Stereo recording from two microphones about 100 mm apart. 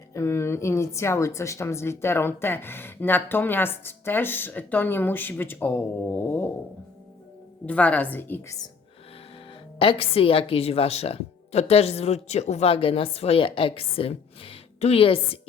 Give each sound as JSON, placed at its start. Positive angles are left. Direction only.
{"t": 0.1, "sound": "a woman's voice", "side_deg": 25}
{"t": 7.7, "sound": "a woman's voice", "side_deg": 15}
{"t": 9.7, "sound": "a woman's voice", "side_deg": 65}